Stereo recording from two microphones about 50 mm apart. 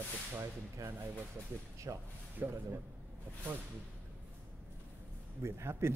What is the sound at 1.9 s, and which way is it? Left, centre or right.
Speech, right.